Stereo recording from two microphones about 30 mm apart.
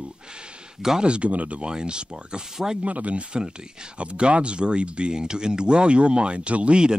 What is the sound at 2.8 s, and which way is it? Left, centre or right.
Speech, right.